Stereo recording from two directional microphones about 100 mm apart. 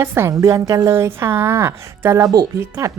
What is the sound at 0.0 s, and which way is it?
A woman's voice, 25° right (ahead or behind).